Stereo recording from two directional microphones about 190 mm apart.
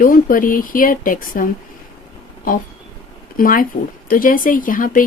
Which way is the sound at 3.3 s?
45° left (ahead or behind).